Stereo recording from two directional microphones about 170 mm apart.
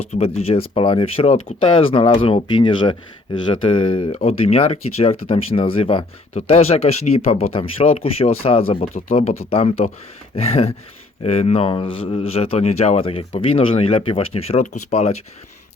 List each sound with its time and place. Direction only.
0.0 s speech: 35° left (ahead or behind)